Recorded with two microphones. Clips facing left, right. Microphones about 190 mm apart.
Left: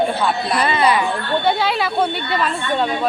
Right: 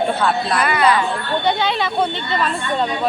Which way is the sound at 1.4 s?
5° left (ahead or behind).